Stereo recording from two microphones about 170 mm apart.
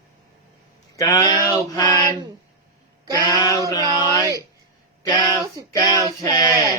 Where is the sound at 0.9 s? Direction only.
20° left (ahead or behind).